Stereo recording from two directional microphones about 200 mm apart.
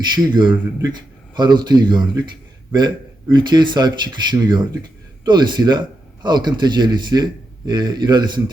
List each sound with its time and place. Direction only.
0.1 s speech: 20° right (ahead or behind)